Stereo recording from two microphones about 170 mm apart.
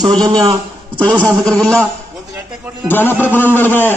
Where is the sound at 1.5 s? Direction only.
5° left (ahead or behind).